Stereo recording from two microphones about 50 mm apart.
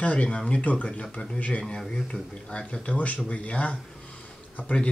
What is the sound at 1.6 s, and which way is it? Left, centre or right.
A man's voice, centre.